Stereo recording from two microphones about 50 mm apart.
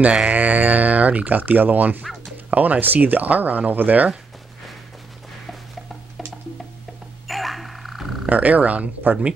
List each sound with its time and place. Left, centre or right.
0.3 s speech: right
7.2 s a sound: centre
8.3 s speech: right